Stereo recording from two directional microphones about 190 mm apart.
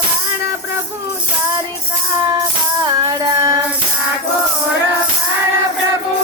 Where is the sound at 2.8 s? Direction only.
20° right (ahead or behind).